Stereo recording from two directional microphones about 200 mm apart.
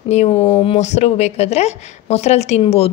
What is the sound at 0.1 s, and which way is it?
Speech, 30° left (ahead or behind).